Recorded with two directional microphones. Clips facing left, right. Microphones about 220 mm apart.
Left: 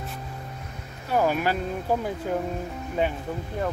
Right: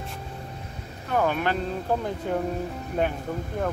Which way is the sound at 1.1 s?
10° left (ahead or behind).